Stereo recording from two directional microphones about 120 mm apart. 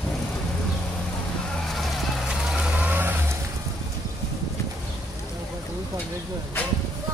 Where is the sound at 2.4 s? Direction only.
5° right (ahead or behind).